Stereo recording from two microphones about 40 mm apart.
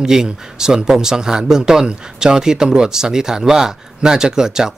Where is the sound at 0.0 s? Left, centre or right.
Centre.